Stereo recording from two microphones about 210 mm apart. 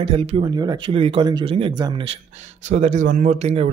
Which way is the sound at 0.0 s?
30° right (ahead or behind).